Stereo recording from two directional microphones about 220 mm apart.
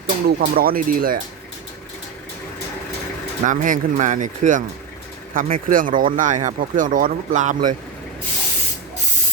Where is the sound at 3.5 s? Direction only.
35° right (ahead or behind).